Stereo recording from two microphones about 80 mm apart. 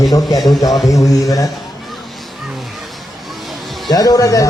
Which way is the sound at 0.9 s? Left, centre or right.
Left.